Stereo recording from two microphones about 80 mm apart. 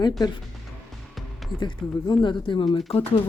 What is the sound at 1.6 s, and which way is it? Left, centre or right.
Speech, left.